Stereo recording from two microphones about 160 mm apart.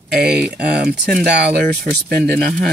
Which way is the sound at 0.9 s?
70° right (ahead or behind).